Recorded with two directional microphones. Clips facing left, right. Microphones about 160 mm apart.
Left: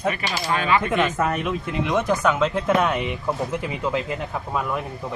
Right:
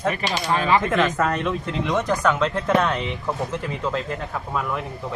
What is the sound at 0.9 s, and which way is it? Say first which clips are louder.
Speech: right 1 dB; 5° left (ahead or behind).